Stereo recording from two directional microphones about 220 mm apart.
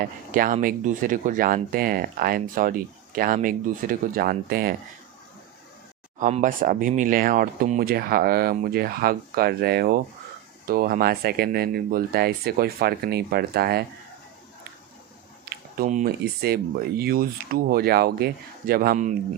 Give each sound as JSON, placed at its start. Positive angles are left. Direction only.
{"t": 0.0, "sound": "speech", "side_deg": -40}
{"t": 6.1, "sound": "speech", "side_deg": -35}
{"t": 15.4, "sound": "speech", "side_deg": -35}